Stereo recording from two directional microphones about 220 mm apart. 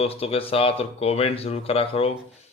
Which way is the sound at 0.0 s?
25° left (ahead or behind).